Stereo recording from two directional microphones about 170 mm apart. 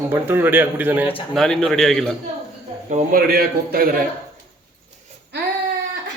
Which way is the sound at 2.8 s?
50° right (ahead or behind).